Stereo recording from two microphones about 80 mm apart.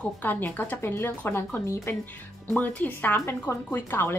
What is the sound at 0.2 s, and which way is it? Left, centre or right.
Speech, left.